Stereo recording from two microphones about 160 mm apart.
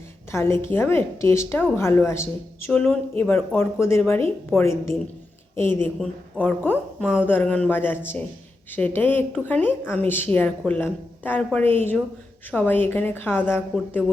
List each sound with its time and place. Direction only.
0.3 s speech: 15° left (ahead or behind)